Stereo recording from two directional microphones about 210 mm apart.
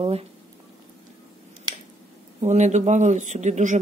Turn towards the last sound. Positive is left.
turn(degrees=-35)  # may be behind; listen again after turning